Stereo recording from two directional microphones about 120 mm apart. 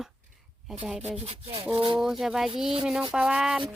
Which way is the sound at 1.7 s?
45° right (ahead or behind).